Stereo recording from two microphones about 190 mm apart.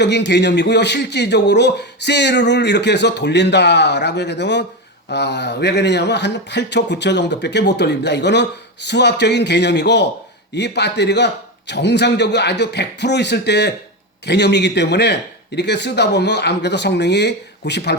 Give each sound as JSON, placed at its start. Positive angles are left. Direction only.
{"t": 0.0, "sound": "speech", "side_deg": 65}